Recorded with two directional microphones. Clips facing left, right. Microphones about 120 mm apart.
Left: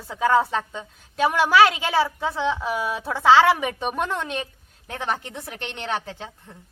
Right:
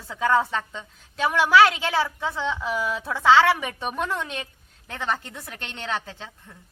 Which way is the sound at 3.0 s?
30° left (ahead or behind).